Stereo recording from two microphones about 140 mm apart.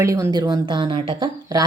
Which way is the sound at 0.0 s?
25° right (ahead or behind).